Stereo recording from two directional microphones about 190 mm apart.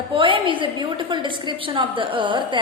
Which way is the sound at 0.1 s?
25° right (ahead or behind).